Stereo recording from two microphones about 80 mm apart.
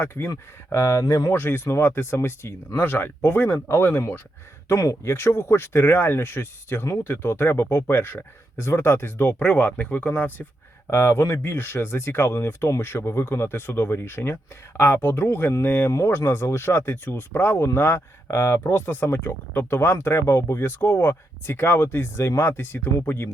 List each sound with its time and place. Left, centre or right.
0.0 s speech: left
4.7 s speech: left
5.0 s speech: left
10.8 s speech: left
18.6 s speech: left